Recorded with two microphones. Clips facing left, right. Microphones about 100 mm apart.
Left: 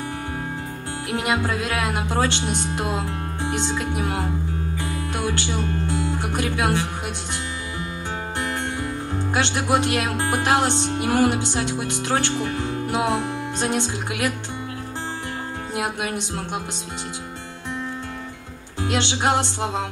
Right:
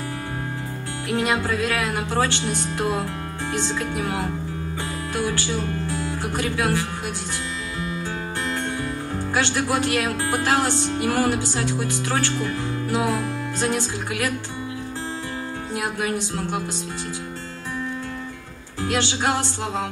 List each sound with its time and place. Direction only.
1.0 s speech: 20° left (ahead or behind)
15.7 s speech: 20° left (ahead or behind)
18.8 s speech: 20° left (ahead or behind)